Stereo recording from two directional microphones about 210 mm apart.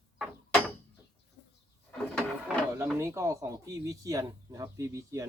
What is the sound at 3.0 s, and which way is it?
Speech, 15° right (ahead or behind).